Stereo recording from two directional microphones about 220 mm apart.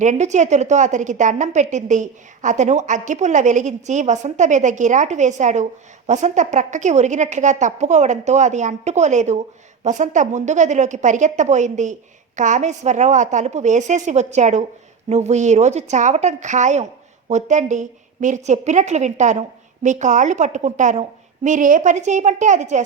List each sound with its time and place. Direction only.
0.0 s a woman's voice: 35° right (ahead or behind)